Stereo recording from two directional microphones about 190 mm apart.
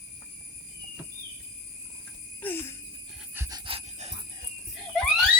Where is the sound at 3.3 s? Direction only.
15° right (ahead or behind).